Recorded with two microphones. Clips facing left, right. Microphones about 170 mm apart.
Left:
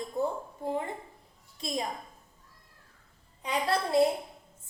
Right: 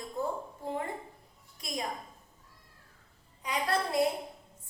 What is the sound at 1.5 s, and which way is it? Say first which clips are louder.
Speech: left 5 dB; 25° left (ahead or behind).